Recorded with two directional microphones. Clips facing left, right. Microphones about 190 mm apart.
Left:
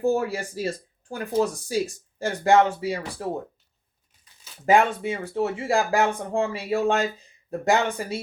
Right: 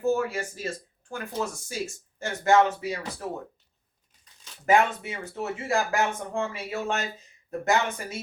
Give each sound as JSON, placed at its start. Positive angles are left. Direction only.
{"t": 0.0, "sound": "speech", "side_deg": 35}
{"t": 4.6, "sound": "speech", "side_deg": 30}